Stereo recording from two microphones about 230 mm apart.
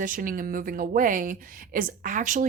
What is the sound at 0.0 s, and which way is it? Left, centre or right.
Speech, right.